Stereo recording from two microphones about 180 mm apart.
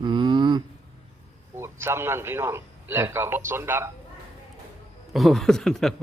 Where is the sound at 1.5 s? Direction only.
15° right (ahead or behind).